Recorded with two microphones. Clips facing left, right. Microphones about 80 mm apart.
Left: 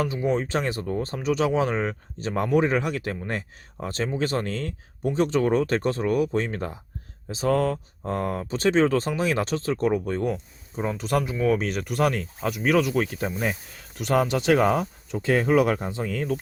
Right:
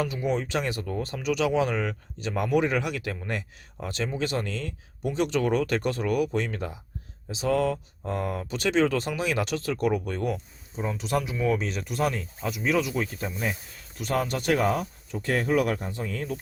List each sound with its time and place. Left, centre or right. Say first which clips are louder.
0.0 s speech: left 3 dB; left
10.8 s speech: left 3 dB; left
13.1 s speech: left 4 dB; left